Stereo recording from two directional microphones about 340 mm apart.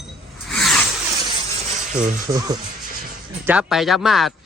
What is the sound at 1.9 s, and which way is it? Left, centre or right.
Speech, right.